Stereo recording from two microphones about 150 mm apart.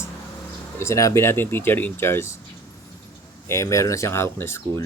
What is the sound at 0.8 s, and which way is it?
Speech, 20° left (ahead or behind).